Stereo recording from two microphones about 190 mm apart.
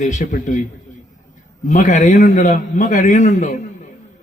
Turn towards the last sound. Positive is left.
turn(degrees=40)  # may be behind; listen again after turning